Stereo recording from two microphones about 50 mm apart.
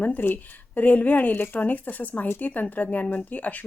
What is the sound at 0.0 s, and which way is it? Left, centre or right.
Speech, left.